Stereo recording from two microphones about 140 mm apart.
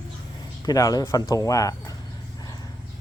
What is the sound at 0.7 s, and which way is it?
Speech, 25° left (ahead or behind).